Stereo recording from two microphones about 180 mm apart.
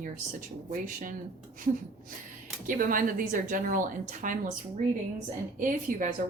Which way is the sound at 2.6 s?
50° right (ahead or behind).